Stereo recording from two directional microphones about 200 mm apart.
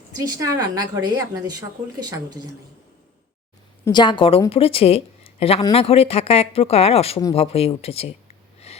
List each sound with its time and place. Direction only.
0.2 s a woman's voice: 15° right (ahead or behind)
3.8 s a woman's voice: 20° left (ahead or behind)
8.7 s snort: 30° left (ahead or behind)